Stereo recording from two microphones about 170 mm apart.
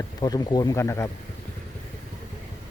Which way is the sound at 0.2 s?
20° left (ahead or behind).